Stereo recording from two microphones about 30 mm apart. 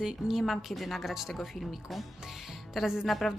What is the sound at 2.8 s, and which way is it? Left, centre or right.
Speech, centre.